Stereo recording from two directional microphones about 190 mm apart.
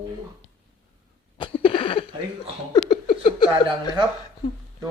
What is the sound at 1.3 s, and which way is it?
Cough, 30° left (ahead or behind).